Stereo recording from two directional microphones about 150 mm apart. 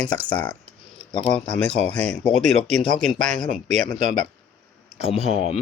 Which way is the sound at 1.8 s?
10° left (ahead or behind).